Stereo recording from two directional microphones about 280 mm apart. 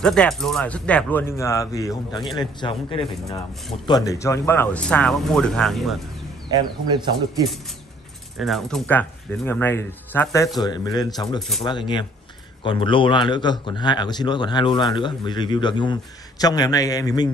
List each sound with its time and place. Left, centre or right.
0.0 s a man's voice: centre
8.4 s a man's voice: centre
11.3 s speech: centre
11.6 s a man's voice: centre